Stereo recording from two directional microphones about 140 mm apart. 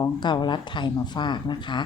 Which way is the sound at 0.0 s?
35° left (ahead or behind).